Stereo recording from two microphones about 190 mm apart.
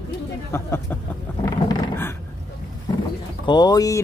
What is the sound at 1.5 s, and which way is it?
Dog, 15° left (ahead or behind).